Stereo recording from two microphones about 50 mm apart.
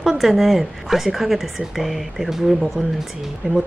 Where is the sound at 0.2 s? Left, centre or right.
Centre.